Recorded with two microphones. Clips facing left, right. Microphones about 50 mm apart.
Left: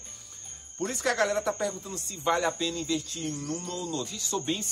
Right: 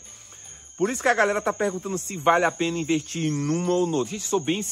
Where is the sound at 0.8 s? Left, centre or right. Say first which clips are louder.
Right 6 dB; right.